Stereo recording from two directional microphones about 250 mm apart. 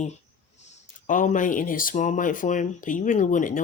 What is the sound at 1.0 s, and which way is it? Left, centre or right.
Speech, left.